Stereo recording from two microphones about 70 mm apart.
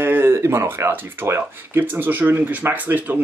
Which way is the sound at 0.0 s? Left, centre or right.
Right.